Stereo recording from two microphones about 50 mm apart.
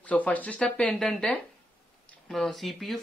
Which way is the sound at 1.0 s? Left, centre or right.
Centre.